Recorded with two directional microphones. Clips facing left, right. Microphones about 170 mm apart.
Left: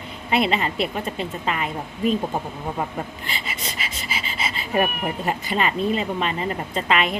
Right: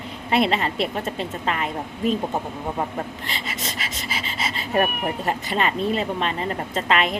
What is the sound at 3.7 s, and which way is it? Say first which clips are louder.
Pant: right 1 dB; centre (ahead or behind).